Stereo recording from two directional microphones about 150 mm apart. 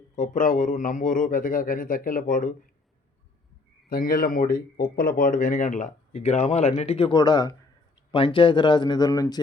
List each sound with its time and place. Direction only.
0.2 s speech: 60° left (ahead or behind)
3.8 s speech: 75° left (ahead or behind); by 9.4 s 25° left (ahead or behind)